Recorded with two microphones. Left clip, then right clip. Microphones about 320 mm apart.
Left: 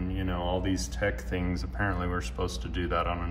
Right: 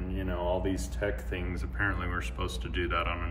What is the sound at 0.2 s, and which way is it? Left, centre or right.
Speech, centre.